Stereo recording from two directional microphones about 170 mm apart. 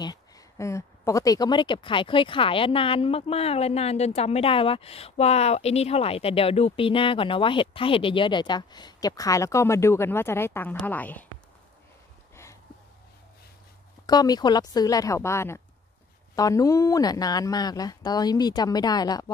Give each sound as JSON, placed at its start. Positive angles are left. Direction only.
{"t": 0.0, "sound": "speech", "side_deg": 20}
{"t": 14.0, "sound": "speech", "side_deg": 25}